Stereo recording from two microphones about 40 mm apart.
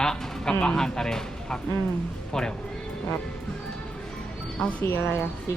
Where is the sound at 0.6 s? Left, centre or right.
Centre.